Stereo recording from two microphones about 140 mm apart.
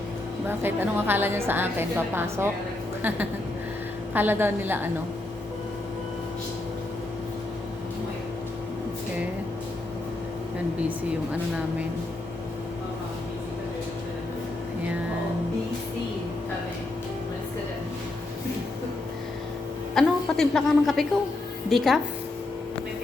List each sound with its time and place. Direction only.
0.4 s a woman's voice: 15° right (ahead or behind)
4.1 s a woman's voice: 15° right (ahead or behind)
20.0 s a woman's voice: 5° left (ahead or behind)